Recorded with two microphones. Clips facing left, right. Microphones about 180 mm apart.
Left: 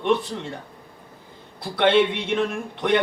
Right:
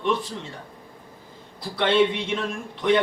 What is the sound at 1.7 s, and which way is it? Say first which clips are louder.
Speech: left 2 dB; 60° left (ahead or behind).